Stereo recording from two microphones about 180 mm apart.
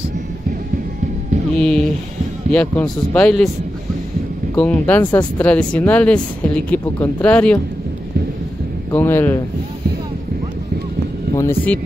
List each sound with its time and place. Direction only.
1.6 s speech: 5° left (ahead or behind)
4.6 s speech: 10° left (ahead or behind)
8.9 s speech: 10° left (ahead or behind)
11.3 s speech: 10° left (ahead or behind)